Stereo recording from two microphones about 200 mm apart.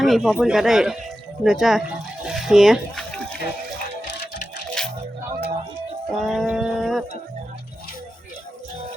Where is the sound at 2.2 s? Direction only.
Centre (ahead or behind).